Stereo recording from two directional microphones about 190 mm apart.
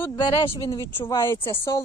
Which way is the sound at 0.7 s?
15° left (ahead or behind).